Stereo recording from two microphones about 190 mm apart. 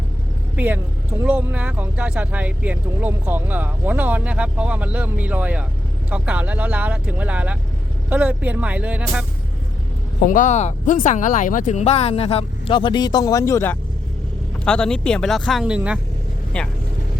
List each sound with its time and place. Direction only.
0.5 s speech: 10° right (ahead or behind)
10.2 s speech: 45° left (ahead or behind); by 16.0 s 5° right (ahead or behind)
16.5 s speech: 5° left (ahead or behind)